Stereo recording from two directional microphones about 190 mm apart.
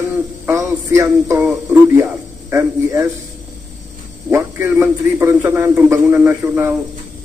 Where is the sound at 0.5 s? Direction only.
15° right (ahead or behind).